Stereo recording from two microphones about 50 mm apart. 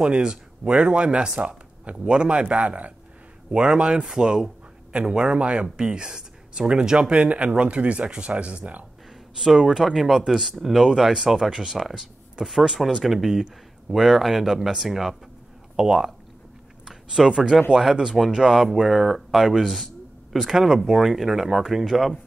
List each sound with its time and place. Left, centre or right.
0.0 s speech: centre
7.2 s speech: right
9.6 s speech: centre